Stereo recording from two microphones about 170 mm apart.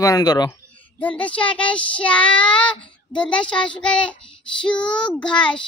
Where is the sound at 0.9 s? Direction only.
10° left (ahead or behind).